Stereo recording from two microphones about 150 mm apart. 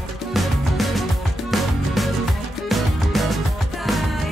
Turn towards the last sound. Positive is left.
turn(degrees=0)  # may be behind; listen again after turning